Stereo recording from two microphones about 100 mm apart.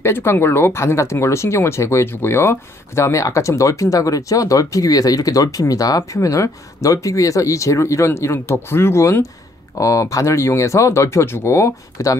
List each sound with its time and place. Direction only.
0.0 s speech: 25° left (ahead or behind)